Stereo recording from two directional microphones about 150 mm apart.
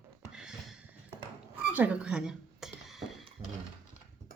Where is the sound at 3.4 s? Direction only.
40° right (ahead or behind).